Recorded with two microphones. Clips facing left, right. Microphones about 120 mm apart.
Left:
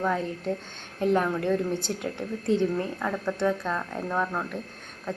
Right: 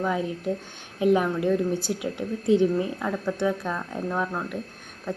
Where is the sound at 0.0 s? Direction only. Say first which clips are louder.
Right 1 dB; 5° right (ahead or behind).